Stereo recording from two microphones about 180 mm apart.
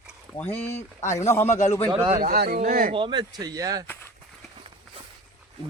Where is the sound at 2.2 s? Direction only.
55° right (ahead or behind).